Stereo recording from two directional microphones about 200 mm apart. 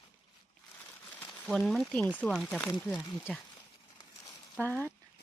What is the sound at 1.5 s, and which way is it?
Speech, centre (ahead or behind).